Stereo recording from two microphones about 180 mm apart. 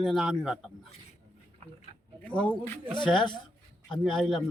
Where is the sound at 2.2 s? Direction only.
5° left (ahead or behind).